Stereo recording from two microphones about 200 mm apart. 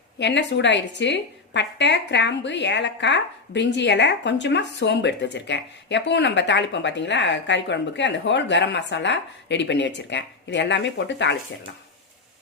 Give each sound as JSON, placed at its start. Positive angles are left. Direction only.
{"t": 0.2, "sound": "a woman's voice", "side_deg": 60}